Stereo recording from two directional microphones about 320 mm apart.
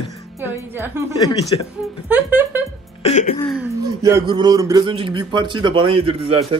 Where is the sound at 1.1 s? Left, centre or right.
Centre.